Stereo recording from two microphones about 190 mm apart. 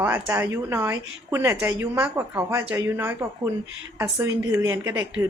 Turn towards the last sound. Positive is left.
turn(degrees=-10)  # may be behind; listen again after turning